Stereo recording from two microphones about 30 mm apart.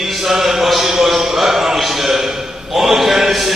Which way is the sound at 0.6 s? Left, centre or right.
Centre.